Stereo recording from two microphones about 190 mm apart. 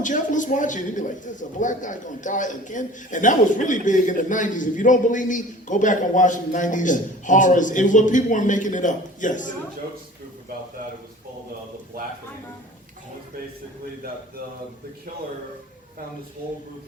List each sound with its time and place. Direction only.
0.0 s a man's voice: 40° left (ahead or behind)